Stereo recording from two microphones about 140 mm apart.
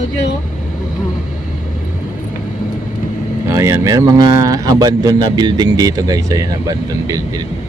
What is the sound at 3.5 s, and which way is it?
Speech, 20° right (ahead or behind).